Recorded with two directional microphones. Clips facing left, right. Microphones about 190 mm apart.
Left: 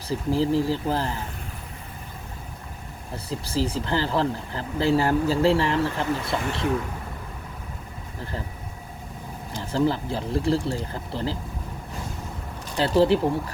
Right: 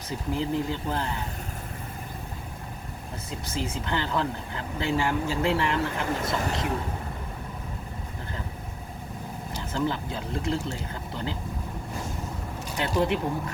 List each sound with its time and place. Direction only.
0.1 s speech: 30° left (ahead or behind)
3.2 s speech: 35° left (ahead or behind)
6.2 s speech: 40° right (ahead or behind)
9.6 s speech: 35° left (ahead or behind)
12.7 s speech: 30° left (ahead or behind)